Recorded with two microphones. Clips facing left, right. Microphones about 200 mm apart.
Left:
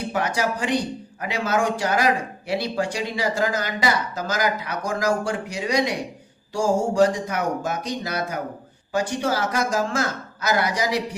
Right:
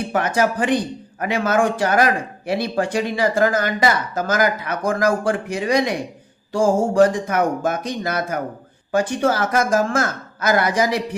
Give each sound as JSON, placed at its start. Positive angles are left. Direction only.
{"t": 0.1, "sound": "a man's voice", "side_deg": -55}